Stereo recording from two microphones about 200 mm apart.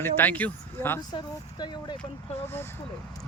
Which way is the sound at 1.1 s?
20° left (ahead or behind).